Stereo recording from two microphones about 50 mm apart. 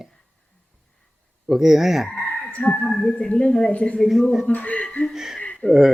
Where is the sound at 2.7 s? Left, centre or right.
Centre.